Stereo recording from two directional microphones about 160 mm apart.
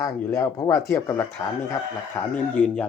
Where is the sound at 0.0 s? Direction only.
20° left (ahead or behind).